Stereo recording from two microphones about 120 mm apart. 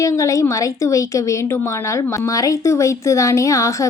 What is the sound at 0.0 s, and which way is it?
Speech, 25° left (ahead or behind).